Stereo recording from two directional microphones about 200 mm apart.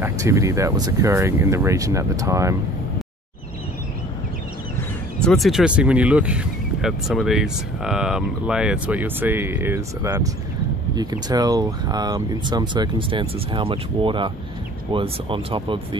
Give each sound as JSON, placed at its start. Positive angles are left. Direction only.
{"t": 0.0, "sound": "speech", "side_deg": -15}
{"t": 5.2, "sound": "speech", "side_deg": 0}